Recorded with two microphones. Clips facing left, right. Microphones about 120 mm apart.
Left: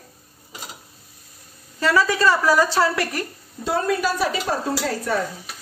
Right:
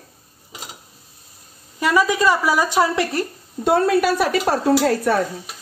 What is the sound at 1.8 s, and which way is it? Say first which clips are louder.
Speech: right 2 dB; 15° right (ahead or behind).